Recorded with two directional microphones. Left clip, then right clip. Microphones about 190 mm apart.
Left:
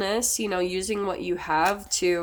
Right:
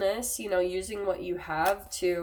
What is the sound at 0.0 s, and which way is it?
Speech, 55° left (ahead or behind).